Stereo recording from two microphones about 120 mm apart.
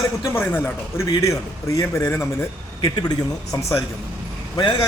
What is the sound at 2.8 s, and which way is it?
Speech, 35° left (ahead or behind).